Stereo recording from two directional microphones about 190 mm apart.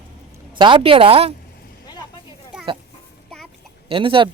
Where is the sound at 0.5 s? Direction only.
25° right (ahead or behind).